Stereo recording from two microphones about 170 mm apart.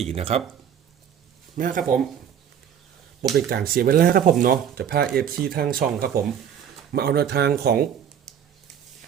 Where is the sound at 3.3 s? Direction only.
60° right (ahead or behind).